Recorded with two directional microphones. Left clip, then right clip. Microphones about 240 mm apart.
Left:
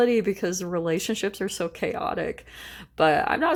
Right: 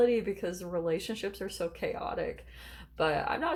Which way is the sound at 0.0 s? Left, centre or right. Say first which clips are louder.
Left 5 dB; left.